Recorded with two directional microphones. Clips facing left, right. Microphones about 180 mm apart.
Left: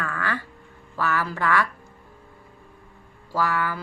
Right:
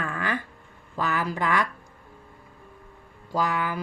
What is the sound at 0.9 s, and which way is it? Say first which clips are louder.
Speech: left 1 dB; 20° right (ahead or behind).